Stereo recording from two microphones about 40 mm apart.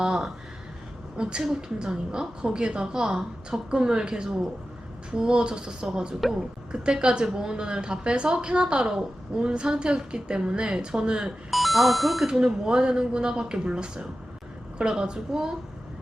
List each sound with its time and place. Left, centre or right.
0.0 s a woman's voice: right
11.5 s speech: centre
12.2 s a woman's voice: centre